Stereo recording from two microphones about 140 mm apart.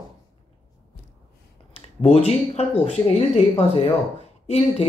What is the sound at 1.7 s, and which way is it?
Speech, 45° left (ahead or behind).